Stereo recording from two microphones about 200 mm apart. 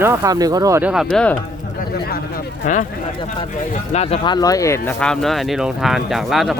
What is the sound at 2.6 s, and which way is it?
Speech, 40° left (ahead or behind).